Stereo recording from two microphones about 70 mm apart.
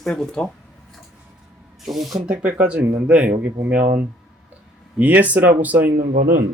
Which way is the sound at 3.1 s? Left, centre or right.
Centre.